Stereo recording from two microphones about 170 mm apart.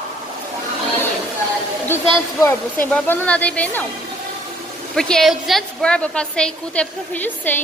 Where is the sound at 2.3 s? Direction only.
15° left (ahead or behind).